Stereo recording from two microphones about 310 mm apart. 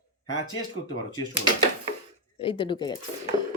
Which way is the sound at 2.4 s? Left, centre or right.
Centre.